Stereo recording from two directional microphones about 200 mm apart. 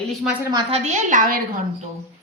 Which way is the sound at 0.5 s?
30° right (ahead or behind).